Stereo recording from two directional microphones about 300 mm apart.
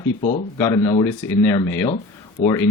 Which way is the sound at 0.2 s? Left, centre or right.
Left.